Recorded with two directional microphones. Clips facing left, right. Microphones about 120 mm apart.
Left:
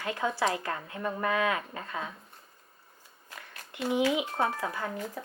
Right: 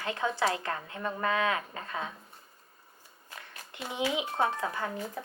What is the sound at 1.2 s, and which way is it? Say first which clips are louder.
Speech: even; 25° right (ahead or behind).